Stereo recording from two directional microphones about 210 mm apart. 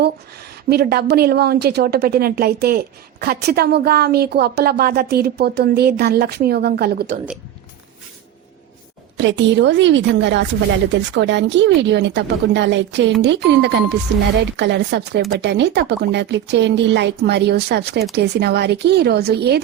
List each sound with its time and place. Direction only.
0.7 s a woman's voice: 50° right (ahead or behind)
9.1 s a woman's voice: 60° right (ahead or behind)